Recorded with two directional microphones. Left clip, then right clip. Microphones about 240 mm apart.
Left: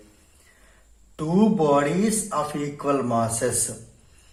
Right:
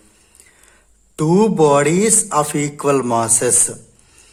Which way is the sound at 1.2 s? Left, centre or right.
Right.